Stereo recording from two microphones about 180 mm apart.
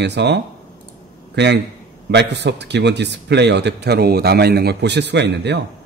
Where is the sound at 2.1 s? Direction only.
70° right (ahead or behind).